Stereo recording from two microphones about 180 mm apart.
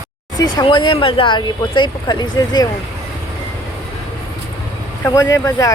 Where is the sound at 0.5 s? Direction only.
25° left (ahead or behind).